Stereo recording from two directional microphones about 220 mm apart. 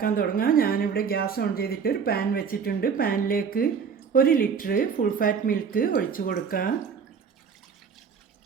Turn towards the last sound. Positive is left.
turn(degrees=40)  # may be behind; listen again after turning